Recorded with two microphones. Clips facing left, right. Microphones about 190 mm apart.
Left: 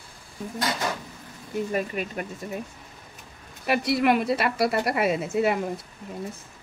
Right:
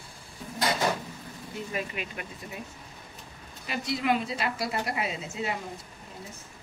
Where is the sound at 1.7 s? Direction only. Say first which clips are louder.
Left 6 dB; 45° left (ahead or behind).